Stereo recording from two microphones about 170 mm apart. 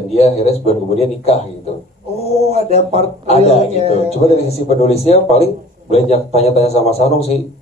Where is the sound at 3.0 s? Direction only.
40° left (ahead or behind).